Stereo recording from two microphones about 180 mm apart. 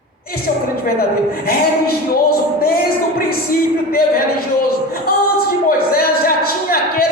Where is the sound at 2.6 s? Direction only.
55° left (ahead or behind).